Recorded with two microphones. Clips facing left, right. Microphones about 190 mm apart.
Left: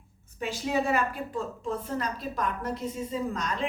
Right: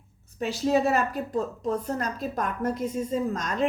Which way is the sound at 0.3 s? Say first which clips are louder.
Right 5 dB; 40° right (ahead or behind).